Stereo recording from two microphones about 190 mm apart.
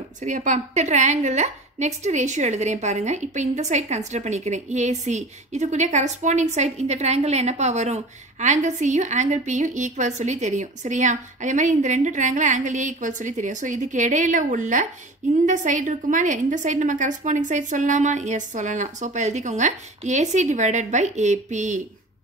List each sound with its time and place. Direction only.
0.2 s a woman's voice: 40° right (ahead or behind)